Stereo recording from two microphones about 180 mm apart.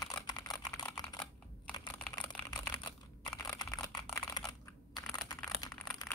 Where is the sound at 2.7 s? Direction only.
25° left (ahead or behind).